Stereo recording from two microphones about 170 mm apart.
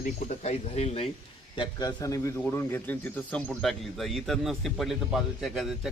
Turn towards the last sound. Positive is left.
turn(degrees=0)  # may be behind; listen again after turning